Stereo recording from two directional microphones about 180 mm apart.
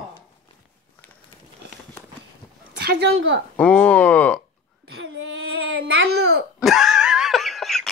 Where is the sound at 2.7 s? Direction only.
70° right (ahead or behind).